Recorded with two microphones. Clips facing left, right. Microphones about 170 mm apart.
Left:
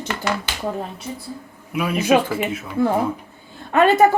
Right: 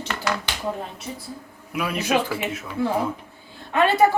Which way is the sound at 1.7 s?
5° left (ahead or behind).